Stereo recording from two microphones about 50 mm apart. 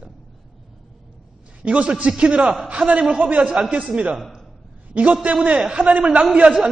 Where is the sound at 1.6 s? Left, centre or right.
Right.